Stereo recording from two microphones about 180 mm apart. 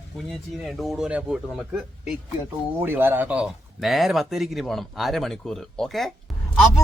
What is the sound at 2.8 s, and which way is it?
Speech, 10° right (ahead or behind).